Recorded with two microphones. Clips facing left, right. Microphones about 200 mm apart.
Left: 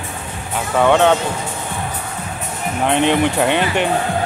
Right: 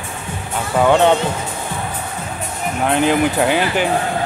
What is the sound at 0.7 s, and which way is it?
Speech, 5° right (ahead or behind).